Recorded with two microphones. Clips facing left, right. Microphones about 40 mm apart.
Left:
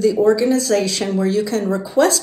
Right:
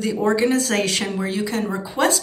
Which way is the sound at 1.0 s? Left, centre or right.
Right.